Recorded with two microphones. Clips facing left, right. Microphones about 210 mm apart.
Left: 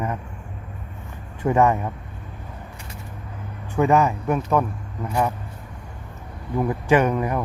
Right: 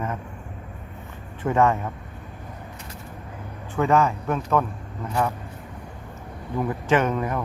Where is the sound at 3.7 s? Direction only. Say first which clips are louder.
Left 2 dB; 15° left (ahead or behind).